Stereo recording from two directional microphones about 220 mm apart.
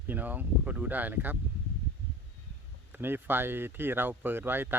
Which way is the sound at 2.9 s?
10° right (ahead or behind).